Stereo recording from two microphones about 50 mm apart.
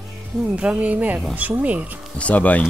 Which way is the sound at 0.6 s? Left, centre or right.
Right.